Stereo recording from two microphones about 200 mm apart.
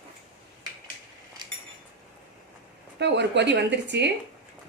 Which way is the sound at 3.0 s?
60° right (ahead or behind).